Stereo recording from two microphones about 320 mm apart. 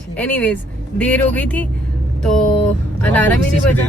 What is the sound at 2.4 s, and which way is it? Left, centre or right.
Vehicle, centre.